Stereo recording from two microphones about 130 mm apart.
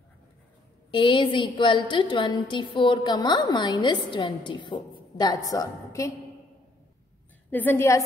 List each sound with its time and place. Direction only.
0.9 s a woman's voice: 40° left (ahead or behind)
7.5 s a woman's voice: 15° left (ahead or behind)